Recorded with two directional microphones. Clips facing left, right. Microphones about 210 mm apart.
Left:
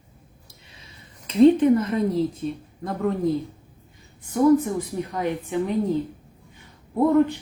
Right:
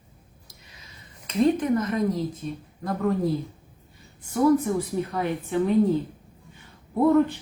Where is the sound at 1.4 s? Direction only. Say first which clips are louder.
Left 7 dB; 30° left (ahead or behind).